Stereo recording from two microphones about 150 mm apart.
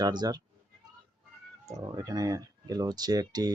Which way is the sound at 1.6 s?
25° right (ahead or behind).